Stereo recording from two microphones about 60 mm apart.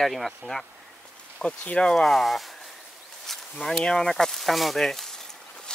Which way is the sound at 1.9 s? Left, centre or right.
Centre.